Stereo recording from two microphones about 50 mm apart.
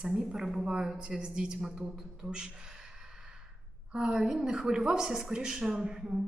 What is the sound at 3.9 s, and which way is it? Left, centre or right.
A woman's voice, centre.